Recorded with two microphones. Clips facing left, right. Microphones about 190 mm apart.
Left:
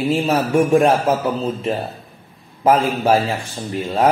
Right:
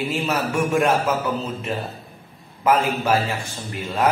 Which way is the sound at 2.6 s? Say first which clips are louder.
Left 4 dB; 35° left (ahead or behind).